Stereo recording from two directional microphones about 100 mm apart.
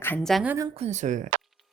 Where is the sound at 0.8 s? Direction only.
90° right.